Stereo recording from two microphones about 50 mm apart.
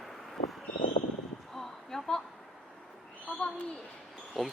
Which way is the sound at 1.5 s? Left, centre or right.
Centre.